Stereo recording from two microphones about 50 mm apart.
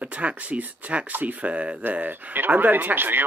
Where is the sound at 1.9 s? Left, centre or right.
Right.